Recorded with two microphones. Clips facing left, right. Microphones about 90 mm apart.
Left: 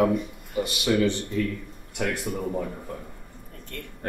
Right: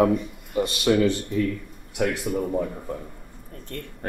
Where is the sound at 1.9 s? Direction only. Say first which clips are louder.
Right 4 dB; centre (ahead or behind).